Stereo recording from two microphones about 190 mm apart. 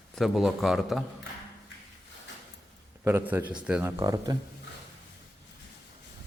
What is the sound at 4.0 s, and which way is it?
Speech, 20° right (ahead or behind).